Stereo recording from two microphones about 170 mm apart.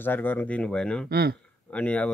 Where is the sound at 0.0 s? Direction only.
10° left (ahead or behind).